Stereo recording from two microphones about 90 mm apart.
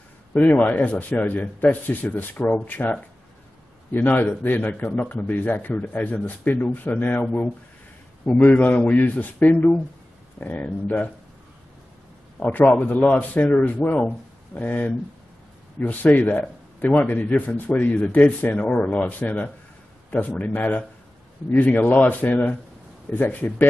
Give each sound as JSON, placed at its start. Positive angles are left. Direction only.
{"t": 0.3, "sound": "a man's voice", "side_deg": 15}
{"t": 8.3, "sound": "speech", "side_deg": 20}
{"t": 12.4, "sound": "a man's voice", "side_deg": 20}